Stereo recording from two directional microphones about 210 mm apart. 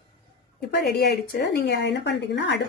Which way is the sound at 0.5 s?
50° left (ahead or behind).